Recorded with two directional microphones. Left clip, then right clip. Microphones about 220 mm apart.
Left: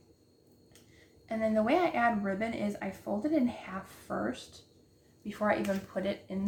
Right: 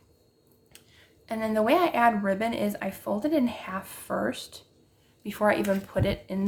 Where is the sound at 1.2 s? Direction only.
40° right (ahead or behind).